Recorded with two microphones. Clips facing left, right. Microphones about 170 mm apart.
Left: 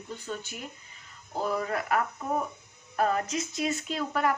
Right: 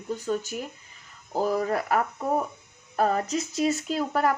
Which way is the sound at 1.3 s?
40° right (ahead or behind).